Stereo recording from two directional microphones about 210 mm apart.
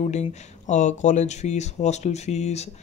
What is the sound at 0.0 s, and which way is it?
Speech, 30° left (ahead or behind).